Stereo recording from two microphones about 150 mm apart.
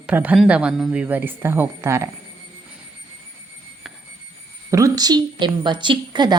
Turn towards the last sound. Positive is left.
turn(degrees=-30)  # may be behind; listen again after turning